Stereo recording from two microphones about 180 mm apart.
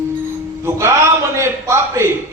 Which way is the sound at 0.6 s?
15° right (ahead or behind).